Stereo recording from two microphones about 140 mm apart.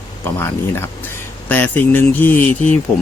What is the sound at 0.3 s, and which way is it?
Speech, 15° left (ahead or behind).